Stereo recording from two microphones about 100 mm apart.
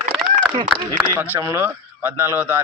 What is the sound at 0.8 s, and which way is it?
Speech, 40° right (ahead or behind).